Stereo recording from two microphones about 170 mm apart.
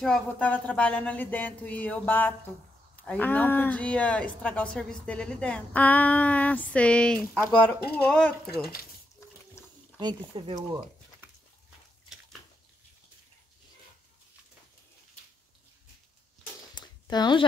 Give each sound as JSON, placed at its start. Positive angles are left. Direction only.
{"t": 0.0, "sound": "speech", "side_deg": 5}
{"t": 9.9, "sound": "speech", "side_deg": -30}
{"t": 16.7, "sound": "a sound", "side_deg": 25}